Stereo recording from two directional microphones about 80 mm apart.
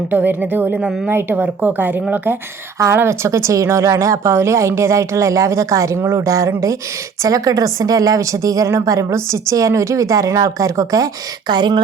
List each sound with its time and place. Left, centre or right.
0.1 s speech: right
2.7 s a woman's voice: right
11.4 s speech: right